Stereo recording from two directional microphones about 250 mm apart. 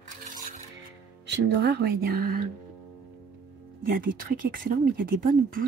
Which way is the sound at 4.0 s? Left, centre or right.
Right.